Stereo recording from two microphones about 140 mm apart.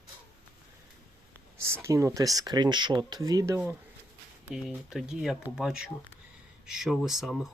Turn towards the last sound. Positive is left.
turn(degrees=0)  # may be behind; listen again after turning